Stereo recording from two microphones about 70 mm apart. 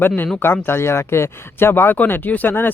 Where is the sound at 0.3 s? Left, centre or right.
Left.